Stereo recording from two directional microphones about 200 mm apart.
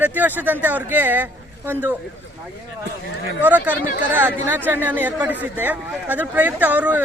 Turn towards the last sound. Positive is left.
turn(degrees=-10)  # may be behind; listen again after turning